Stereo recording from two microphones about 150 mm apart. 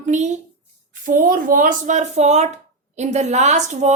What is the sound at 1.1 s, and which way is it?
A woman's voice, 65° right (ahead or behind).